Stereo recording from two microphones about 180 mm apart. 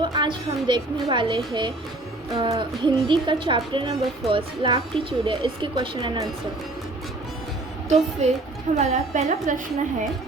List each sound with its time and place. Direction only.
0.0 s speech: 25° right (ahead or behind)
7.9 s a woman's voice: 40° right (ahead or behind)